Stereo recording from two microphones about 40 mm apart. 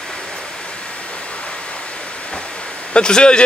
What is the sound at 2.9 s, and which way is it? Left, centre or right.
Speech, left.